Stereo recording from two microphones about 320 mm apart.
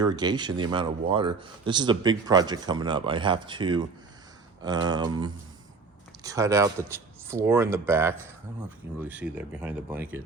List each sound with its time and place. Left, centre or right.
0.0 s speech: centre